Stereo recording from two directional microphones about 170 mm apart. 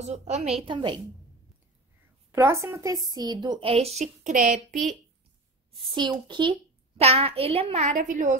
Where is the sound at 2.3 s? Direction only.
15° right (ahead or behind); by 4.9 s 50° right (ahead or behind).